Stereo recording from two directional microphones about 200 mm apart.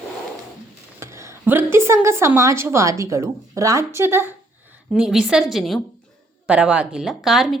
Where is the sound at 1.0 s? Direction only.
15° right (ahead or behind).